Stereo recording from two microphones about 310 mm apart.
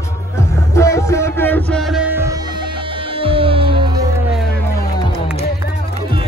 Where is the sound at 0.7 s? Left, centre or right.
Centre.